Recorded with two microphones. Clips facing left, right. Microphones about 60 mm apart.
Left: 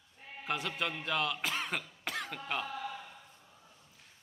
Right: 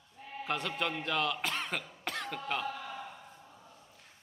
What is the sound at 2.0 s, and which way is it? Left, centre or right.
Cough, centre.